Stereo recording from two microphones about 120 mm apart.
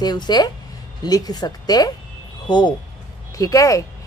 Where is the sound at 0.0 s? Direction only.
35° left (ahead or behind).